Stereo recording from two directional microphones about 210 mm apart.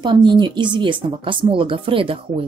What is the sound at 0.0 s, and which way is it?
Speech, 20° right (ahead or behind).